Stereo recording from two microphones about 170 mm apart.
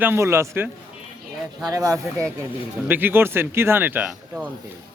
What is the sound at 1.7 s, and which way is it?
A man's voice, 20° right (ahead or behind).